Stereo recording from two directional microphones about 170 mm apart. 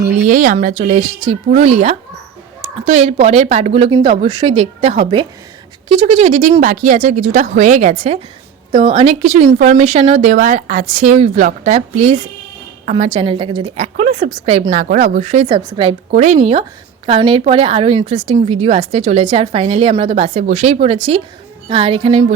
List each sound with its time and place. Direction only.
0.3 s a woman's voice: 50° right (ahead or behind)
12.8 s a sound: 45° right (ahead or behind)
13.1 s a woman's voice: 30° right (ahead or behind)
14.7 s a woman's voice: 50° right (ahead or behind)